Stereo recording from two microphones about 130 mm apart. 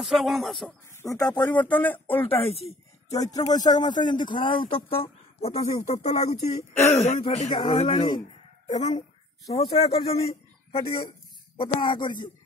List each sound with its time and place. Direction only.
0.0 s speech: centre (ahead or behind)
1.0 s speech: 25° left (ahead or behind)
1.4 s speech: 10° left (ahead or behind)
2.2 s speech: 50° left (ahead or behind)
3.3 s speech: 30° left (ahead or behind); by 7.2 s 60° left (ahead or behind)
7.3 s speech: 75° left (ahead or behind)
7.7 s speech: 35° left (ahead or behind)
8.6 s speech: 65° left (ahead or behind)
9.7 s speech: 50° left (ahead or behind)